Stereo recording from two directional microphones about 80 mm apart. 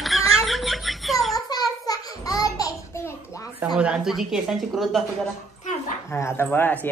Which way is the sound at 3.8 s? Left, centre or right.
Centre.